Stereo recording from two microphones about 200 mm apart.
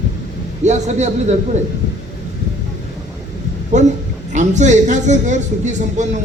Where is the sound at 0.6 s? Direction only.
35° right (ahead or behind).